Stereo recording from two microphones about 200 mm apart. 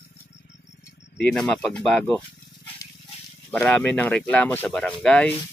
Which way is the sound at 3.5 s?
5° left (ahead or behind).